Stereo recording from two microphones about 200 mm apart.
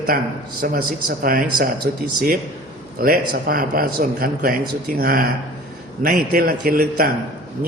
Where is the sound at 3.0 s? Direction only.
50° right (ahead or behind).